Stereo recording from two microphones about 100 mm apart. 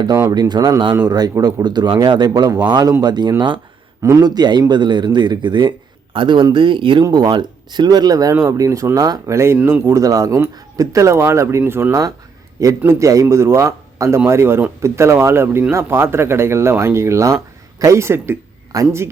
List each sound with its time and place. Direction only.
0.3 s speech: 45° right (ahead or behind)
7.0 s speech: 45° right (ahead or behind)